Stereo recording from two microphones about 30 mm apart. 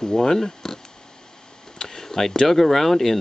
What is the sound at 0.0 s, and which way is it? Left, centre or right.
Speech, centre.